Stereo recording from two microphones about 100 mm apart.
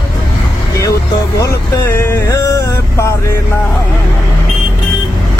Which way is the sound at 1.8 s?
25° left (ahead or behind).